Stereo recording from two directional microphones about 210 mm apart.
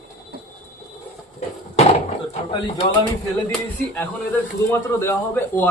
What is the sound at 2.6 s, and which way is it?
Speech, 25° left (ahead or behind).